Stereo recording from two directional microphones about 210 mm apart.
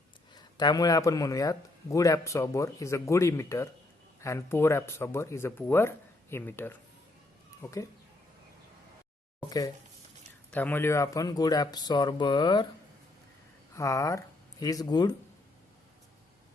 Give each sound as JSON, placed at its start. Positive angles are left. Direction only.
{"t": 0.3, "sound": "a man's voice", "side_deg": 20}
{"t": 9.5, "sound": "a man's voice", "side_deg": 15}
{"t": 13.7, "sound": "speech", "side_deg": 15}